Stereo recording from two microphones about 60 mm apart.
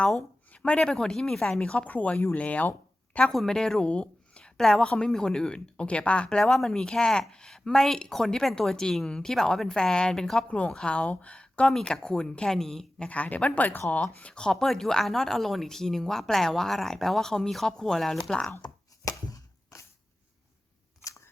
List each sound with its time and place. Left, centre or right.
0.5 s speech: centre
3.3 s a woman's voice: centre
6.4 s speech: centre
13.0 s a woman's voice: left
14.0 s speech: centre
19.0 s a sound: left